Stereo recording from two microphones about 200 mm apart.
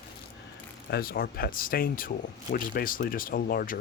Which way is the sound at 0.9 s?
50° left (ahead or behind).